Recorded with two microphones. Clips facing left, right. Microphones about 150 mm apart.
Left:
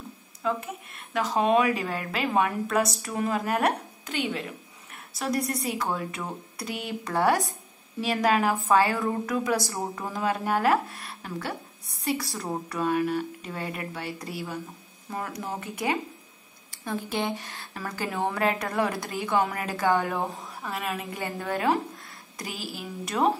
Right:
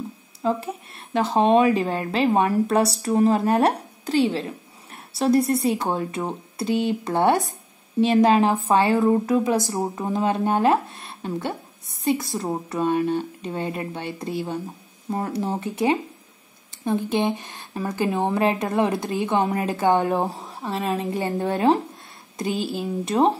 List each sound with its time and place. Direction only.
0.4 s speech: 35° right (ahead or behind)